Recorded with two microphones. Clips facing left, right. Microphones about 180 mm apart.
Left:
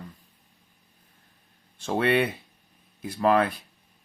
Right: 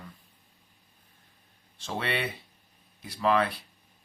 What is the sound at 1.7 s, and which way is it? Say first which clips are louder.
Speech: left 9 dB; 50° left (ahead or behind).